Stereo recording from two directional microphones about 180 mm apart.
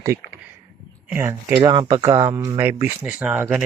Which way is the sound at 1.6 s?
25° right (ahead or behind).